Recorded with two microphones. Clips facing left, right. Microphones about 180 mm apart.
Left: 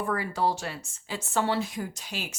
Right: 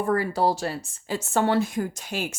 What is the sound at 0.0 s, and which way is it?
Speech, 40° right (ahead or behind).